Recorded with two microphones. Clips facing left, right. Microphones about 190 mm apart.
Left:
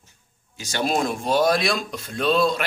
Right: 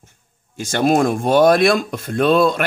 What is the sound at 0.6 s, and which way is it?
Speech, 55° right (ahead or behind).